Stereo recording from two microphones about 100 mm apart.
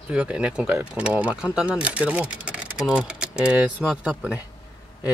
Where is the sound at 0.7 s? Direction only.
20° right (ahead or behind).